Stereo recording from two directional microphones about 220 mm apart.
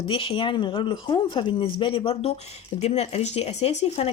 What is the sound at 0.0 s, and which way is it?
Speech, 25° left (ahead or behind).